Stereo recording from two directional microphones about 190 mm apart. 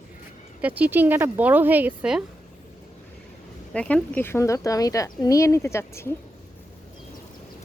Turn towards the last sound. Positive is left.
turn(degrees=15)  # may be behind; listen again after turning